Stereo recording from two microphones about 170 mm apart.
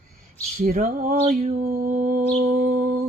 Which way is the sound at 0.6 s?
55° right (ahead or behind).